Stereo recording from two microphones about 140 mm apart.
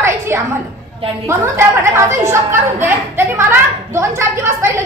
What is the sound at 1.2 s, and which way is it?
A woman's voice, 20° right (ahead or behind).